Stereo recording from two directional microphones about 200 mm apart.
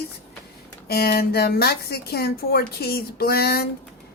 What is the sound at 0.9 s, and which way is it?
Speech, 50° left (ahead or behind).